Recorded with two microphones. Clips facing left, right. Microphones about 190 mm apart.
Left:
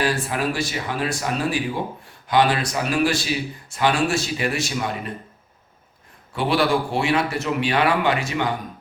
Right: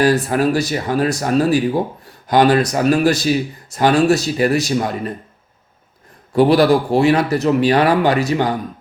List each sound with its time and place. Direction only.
0.0 s speech: 40° right (ahead or behind)
6.3 s speech: 40° right (ahead or behind)